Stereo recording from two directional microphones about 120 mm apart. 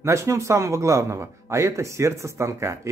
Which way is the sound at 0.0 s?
25° right (ahead or behind).